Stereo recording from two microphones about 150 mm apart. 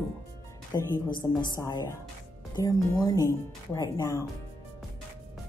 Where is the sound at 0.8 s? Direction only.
30° left (ahead or behind).